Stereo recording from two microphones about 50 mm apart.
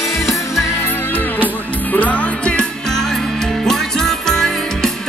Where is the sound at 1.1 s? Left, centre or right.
Left.